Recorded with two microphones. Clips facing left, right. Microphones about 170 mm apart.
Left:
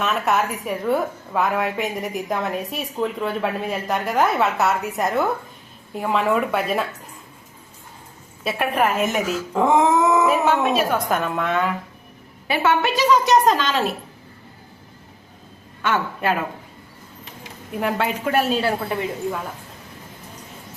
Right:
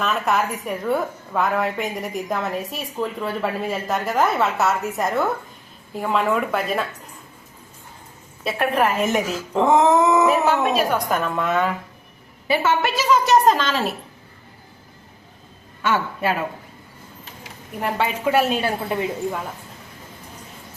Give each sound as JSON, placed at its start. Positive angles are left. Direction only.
{"t": 0.0, "sound": "a woman's voice", "side_deg": 0}
{"t": 8.4, "sound": "a woman's voice", "side_deg": 0}
{"t": 17.7, "sound": "a woman's voice", "side_deg": 0}
{"t": 18.3, "sound": "a woman's voice", "side_deg": -15}